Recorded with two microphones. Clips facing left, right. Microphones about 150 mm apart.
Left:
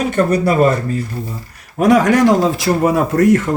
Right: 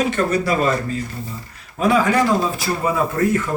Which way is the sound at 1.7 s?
70° left (ahead or behind).